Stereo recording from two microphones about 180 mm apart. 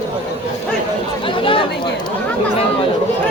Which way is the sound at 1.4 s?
30° left (ahead or behind).